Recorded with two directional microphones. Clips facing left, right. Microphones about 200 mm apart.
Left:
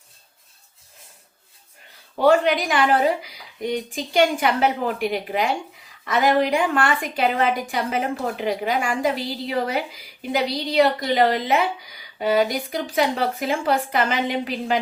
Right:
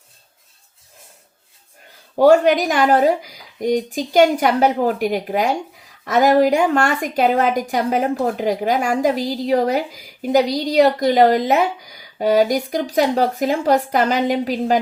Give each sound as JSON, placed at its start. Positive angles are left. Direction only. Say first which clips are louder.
{"t": 2.1, "sound": "a woman's voice", "louder": "right 5 dB", "side_deg": -45}